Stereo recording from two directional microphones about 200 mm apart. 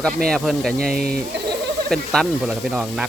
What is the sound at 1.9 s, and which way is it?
Speech, centre (ahead or behind).